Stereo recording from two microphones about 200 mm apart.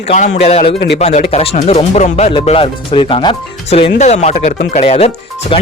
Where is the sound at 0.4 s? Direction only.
30° left (ahead or behind).